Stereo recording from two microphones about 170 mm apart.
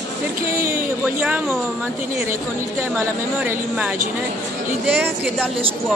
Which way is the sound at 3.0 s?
10° right (ahead or behind).